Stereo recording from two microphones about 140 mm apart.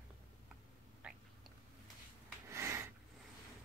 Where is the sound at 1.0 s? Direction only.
10° right (ahead or behind).